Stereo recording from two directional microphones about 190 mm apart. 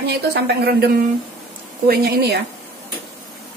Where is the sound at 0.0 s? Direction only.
55° right (ahead or behind).